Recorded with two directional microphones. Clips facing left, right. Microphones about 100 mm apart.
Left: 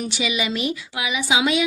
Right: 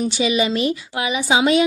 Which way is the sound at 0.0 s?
35° right (ahead or behind).